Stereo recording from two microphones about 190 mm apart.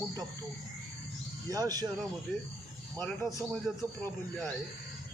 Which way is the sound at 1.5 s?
20° right (ahead or behind).